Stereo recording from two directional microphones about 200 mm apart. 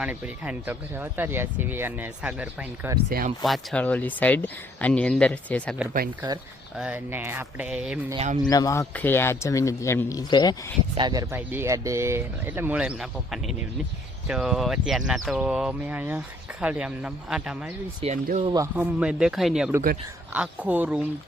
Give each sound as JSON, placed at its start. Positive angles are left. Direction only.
{"t": 0.0, "sound": "speech", "side_deg": -5}
{"t": 3.1, "sound": "speech", "side_deg": -50}
{"t": 3.4, "sound": "speech", "side_deg": 0}
{"t": 6.7, "sound": "speech", "side_deg": -5}
{"t": 8.1, "sound": "speech", "side_deg": -35}
{"t": 8.4, "sound": "speech", "side_deg": 20}
{"t": 10.9, "sound": "speech", "side_deg": -20}
{"t": 18.0, "sound": "speech", "side_deg": -35}
{"t": 18.5, "sound": "speech", "side_deg": -10}